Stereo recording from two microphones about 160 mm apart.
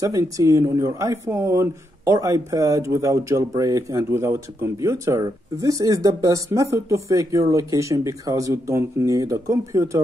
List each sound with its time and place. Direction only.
0.0 s speech: 20° right (ahead or behind)